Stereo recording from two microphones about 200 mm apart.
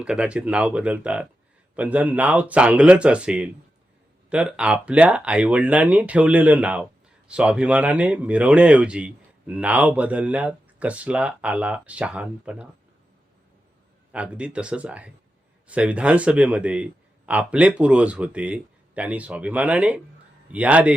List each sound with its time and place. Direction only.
0.0 s speech: 5° right (ahead or behind)
14.1 s speech: 5° right (ahead or behind)